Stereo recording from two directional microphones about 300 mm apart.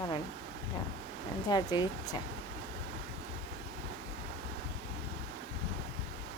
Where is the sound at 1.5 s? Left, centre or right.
Centre.